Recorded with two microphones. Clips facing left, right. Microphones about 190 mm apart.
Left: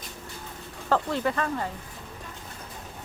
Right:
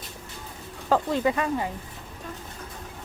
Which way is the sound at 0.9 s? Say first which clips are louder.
Right 3 dB; 15° right (ahead or behind).